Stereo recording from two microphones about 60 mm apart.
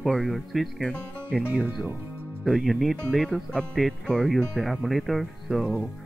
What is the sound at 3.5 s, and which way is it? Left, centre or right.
Speech, centre.